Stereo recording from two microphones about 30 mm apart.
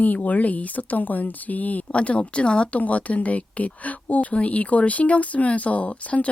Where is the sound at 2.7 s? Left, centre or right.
Left.